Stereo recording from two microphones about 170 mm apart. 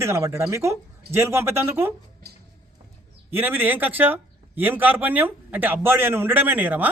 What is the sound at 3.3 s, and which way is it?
A man's voice, 10° right (ahead or behind).